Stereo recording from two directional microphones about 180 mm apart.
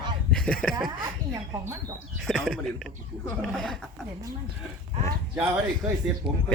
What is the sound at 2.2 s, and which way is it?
Speech, centre (ahead or behind).